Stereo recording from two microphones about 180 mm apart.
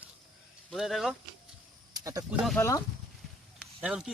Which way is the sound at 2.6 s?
15° left (ahead or behind).